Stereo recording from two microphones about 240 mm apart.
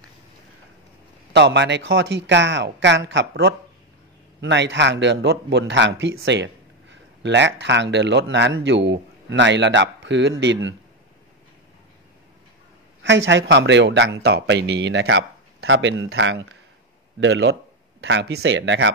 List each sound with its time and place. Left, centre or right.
1.3 s speech: right
13.0 s speech: right